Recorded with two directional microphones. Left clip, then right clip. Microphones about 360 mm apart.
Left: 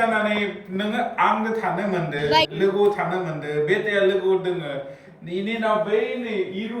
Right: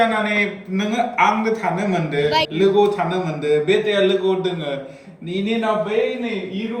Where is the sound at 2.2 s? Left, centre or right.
Centre.